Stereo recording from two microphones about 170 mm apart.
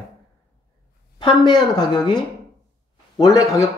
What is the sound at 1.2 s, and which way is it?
Speech, 25° left (ahead or behind).